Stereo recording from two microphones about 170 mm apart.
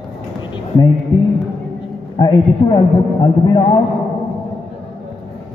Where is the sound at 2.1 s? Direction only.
25° left (ahead or behind).